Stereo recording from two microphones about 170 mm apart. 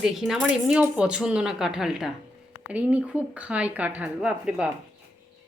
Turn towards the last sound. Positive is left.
turn(degrees=-5)  # may be behind; listen again after turning